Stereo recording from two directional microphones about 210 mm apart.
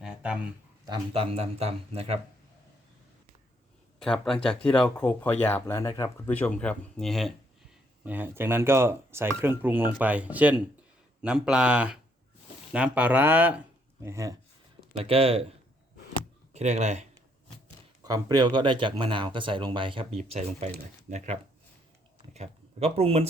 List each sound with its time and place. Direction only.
0.0 s a sound: 5° right (ahead or behind)
0.9 s speech: 25° right (ahead or behind)
4.0 s speech: centre (ahead or behind); by 14.3 s 15° right (ahead or behind)
14.9 s speech: 25° right (ahead or behind)
18.0 s speech: 20° right (ahead or behind)